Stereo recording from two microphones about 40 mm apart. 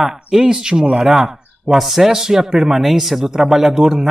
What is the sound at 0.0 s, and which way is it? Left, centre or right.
A man's voice, centre.